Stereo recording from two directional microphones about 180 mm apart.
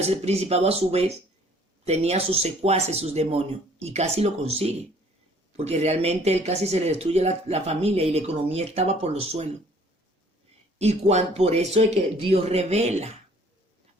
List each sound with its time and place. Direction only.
0.0 s speech: 35° right (ahead or behind)
10.8 s speech: 35° right (ahead or behind)